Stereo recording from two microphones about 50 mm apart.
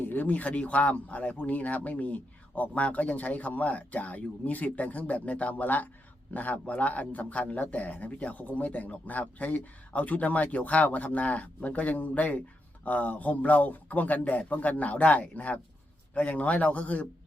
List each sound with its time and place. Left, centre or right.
0.0 s a man's voice: left